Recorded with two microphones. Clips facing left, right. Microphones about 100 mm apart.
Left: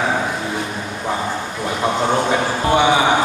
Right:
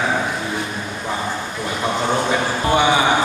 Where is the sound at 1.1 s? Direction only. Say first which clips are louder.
Left 1 dB; 20° left (ahead or behind).